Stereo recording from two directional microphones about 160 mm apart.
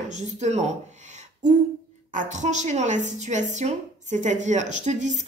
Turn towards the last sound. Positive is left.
turn(degrees=-50)  # may be behind; listen again after turning